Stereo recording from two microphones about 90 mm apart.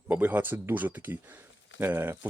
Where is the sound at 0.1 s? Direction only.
20° right (ahead or behind).